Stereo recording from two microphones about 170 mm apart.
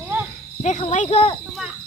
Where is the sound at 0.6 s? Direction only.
40° left (ahead or behind).